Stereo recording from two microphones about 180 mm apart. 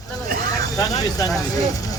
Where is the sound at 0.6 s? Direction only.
20° left (ahead or behind).